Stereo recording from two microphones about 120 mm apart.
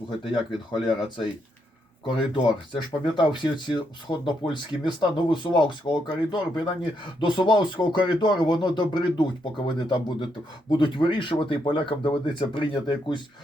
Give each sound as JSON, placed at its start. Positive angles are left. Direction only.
{"t": 0.7, "sound": "speech", "side_deg": 40}